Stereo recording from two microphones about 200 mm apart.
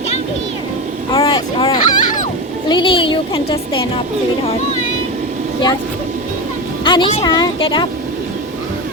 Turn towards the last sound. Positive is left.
turn(degrees=25)  # may be behind; listen again after turning